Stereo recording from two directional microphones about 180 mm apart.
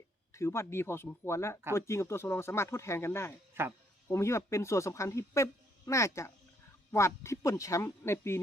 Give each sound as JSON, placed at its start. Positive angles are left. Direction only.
{"t": 0.3, "sound": "speech", "side_deg": 15}
{"t": 3.6, "sound": "speech", "side_deg": -15}
{"t": 4.1, "sound": "speech", "side_deg": 15}